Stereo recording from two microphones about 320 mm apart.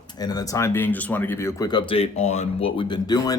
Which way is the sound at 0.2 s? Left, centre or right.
Centre.